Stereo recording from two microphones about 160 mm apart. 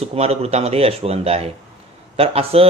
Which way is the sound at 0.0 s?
40° right (ahead or behind).